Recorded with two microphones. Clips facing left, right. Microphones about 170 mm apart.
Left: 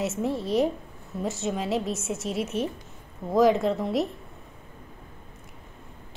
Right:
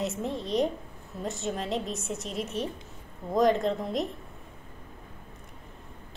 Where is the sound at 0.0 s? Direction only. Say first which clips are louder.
Left 4 dB; 5° left (ahead or behind).